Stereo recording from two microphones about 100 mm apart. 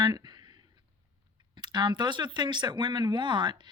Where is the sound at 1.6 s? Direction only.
45° right (ahead or behind).